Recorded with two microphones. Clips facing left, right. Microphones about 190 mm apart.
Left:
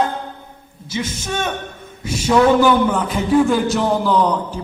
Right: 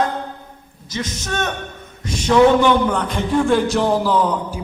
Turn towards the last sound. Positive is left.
turn(degrees=-5)  # may be behind; listen again after turning